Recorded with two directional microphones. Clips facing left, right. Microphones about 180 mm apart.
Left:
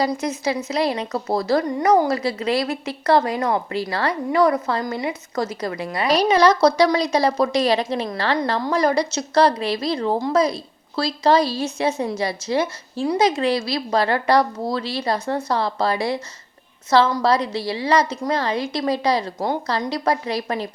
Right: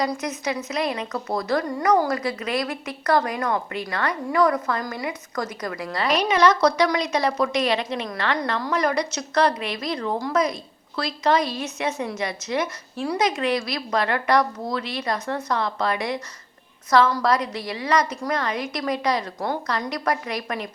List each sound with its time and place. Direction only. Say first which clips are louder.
0.0 s a woman's voice: left 4 dB; 30° left (ahead or behind)
6.1 s a woman's voice: left 3 dB; 35° left (ahead or behind)